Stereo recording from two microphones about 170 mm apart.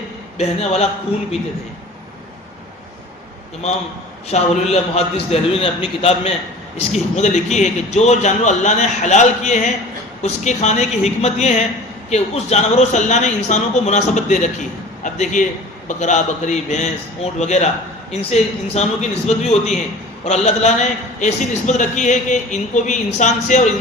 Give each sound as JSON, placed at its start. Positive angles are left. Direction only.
{"t": 0.3, "sound": "a man's voice", "side_deg": 40}
{"t": 4.3, "sound": "a man's voice", "side_deg": 40}